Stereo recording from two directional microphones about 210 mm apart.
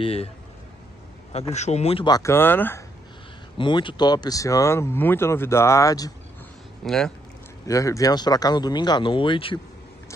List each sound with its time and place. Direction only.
0.0 s speech: 30° left (ahead or behind)
1.3 s speech: 30° left (ahead or behind); by 2.8 s 10° left (ahead or behind)
3.5 s speech: 20° left (ahead or behind)
6.8 s speech: centre (ahead or behind)
7.6 s speech: 15° left (ahead or behind)